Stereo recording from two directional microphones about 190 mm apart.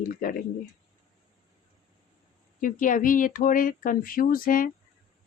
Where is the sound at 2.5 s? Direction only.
45° left (ahead or behind).